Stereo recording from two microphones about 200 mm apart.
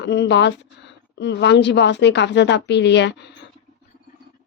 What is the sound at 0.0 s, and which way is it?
Speech, 60° left (ahead or behind).